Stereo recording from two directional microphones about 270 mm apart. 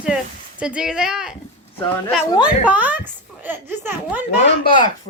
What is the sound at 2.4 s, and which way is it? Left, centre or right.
A child's voice, centre.